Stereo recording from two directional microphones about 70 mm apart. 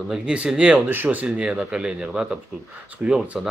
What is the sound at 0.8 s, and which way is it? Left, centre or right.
Speech, right.